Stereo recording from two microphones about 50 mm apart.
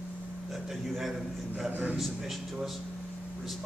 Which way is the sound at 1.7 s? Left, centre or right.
Right.